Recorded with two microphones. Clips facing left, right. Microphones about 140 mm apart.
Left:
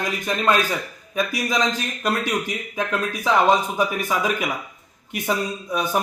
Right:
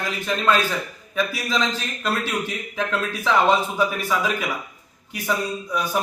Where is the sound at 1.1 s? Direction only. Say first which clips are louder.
Left 1 dB; 15° left (ahead or behind).